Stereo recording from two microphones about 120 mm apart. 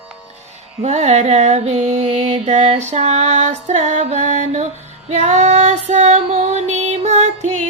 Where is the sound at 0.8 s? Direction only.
70° right (ahead or behind).